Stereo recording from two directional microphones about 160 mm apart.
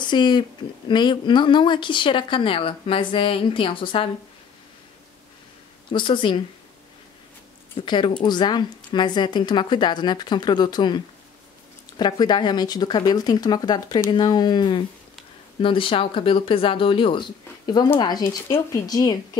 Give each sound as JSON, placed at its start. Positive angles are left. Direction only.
{"t": 0.0, "sound": "speech", "side_deg": 30}
{"t": 5.9, "sound": "speech", "side_deg": 30}
{"t": 7.7, "sound": "a woman's voice", "side_deg": 30}
{"t": 12.0, "sound": "a woman's voice", "side_deg": 25}